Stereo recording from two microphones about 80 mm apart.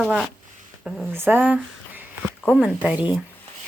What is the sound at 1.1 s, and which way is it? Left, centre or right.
Speech, right.